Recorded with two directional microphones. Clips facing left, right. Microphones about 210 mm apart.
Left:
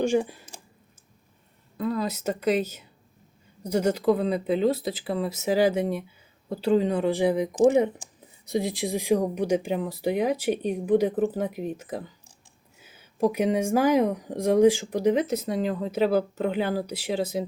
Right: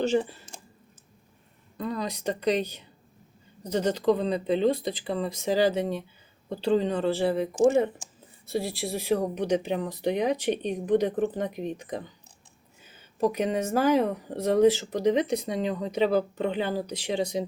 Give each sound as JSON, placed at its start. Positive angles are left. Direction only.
{"t": 0.0, "sound": "speech", "side_deg": 10}
{"t": 1.8, "sound": "speech", "side_deg": 5}